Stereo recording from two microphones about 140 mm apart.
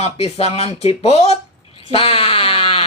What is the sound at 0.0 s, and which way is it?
Speech, 45° left (ahead or behind).